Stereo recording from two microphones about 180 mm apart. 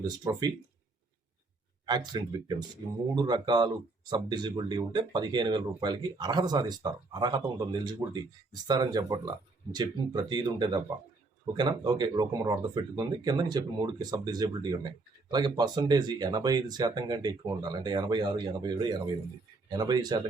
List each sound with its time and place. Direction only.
0.3 s speech: 20° right (ahead or behind)
1.9 s speech: 25° right (ahead or behind)